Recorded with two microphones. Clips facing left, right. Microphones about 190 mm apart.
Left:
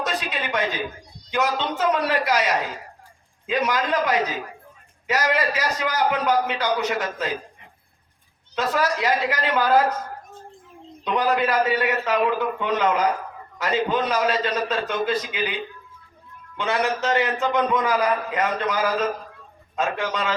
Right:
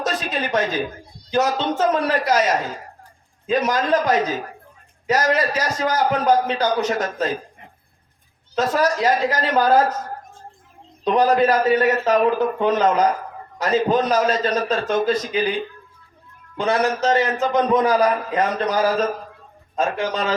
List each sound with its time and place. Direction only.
0.0 s a sound: 45° right (ahead or behind)
1.3 s a man's voice: 40° right (ahead or behind)
8.5 s a man's voice: 45° right (ahead or behind)
11.0 s a man's voice: 40° right (ahead or behind)
16.6 s a man's voice: 40° right (ahead or behind)